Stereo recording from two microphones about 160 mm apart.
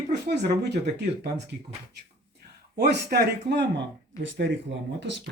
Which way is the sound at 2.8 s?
90° right.